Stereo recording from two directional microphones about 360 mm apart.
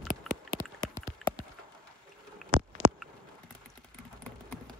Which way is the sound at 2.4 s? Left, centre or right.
Right.